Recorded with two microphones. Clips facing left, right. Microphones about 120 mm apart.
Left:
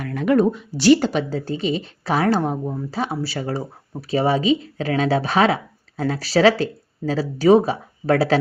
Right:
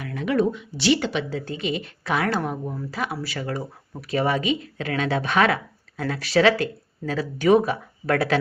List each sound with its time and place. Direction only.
0.0 s speech: 50° left (ahead or behind); by 8.4 s 30° left (ahead or behind)